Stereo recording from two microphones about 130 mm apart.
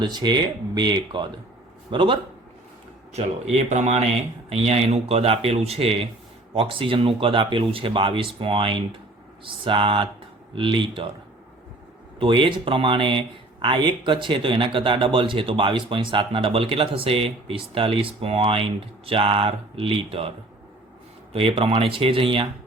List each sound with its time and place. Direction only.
0.0 s speech: 35° right (ahead or behind)
3.1 s speech: 60° right (ahead or behind); by 11.1 s 40° right (ahead or behind)
12.2 s speech: 40° right (ahead or behind)
21.3 s speech: 45° right (ahead or behind)